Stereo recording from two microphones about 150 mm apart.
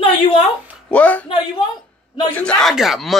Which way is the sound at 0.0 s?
35° left (ahead or behind).